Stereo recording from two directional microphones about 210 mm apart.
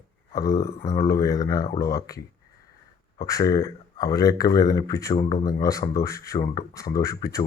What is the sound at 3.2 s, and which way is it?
Speech, 15° left (ahead or behind).